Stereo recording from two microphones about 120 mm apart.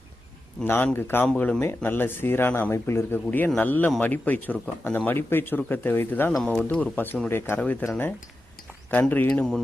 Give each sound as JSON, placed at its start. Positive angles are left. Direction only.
{"t": 0.6, "sound": "speech", "side_deg": 15}